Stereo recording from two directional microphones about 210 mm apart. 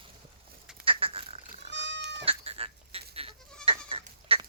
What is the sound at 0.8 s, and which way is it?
Duck, 25° right (ahead or behind).